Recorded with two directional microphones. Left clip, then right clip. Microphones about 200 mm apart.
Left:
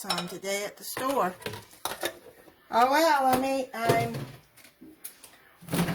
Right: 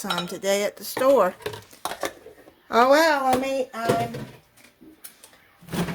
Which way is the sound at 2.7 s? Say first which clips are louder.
Right 6 dB; 40° right (ahead or behind).